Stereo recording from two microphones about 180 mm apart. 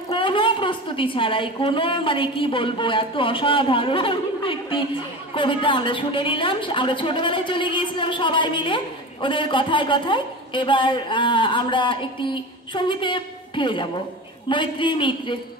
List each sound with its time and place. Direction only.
0.1 s a woman's voice: 30° left (ahead or behind)